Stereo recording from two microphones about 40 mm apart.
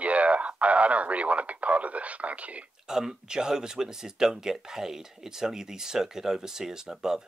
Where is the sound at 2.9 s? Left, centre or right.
Centre.